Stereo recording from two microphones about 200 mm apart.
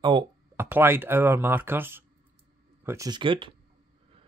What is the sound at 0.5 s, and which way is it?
Speech, 10° right (ahead or behind).